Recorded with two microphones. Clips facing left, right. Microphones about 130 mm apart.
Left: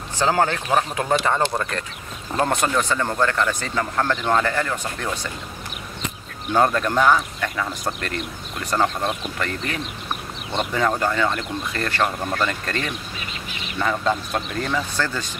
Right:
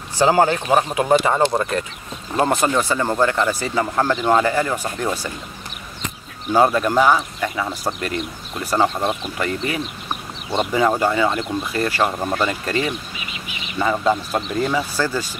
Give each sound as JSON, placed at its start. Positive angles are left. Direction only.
{"t": 0.2, "sound": "speech", "side_deg": -10}
{"t": 6.4, "sound": "speech", "side_deg": -10}